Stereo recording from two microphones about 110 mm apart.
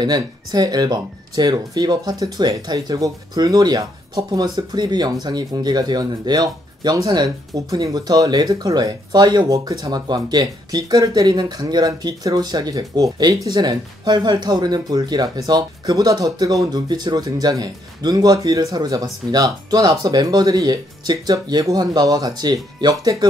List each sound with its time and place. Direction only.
0.0 s speech: 40° right (ahead or behind)